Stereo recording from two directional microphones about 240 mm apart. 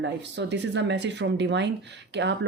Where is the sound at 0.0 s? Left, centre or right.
Right.